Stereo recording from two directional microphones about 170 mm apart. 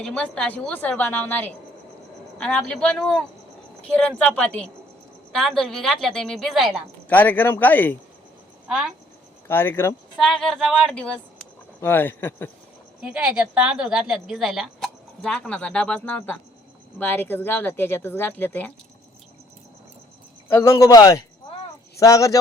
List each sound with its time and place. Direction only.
0.0 s a woman's voice: 5° left (ahead or behind)
7.1 s speech: 10° left (ahead or behind)
9.5 s speech: 15° left (ahead or behind)
10.2 s a woman's voice: centre (ahead or behind)
13.0 s a woman's voice: 5° right (ahead or behind); by 18.7 s 10° left (ahead or behind)
20.5 s speech: 15° left (ahead or behind)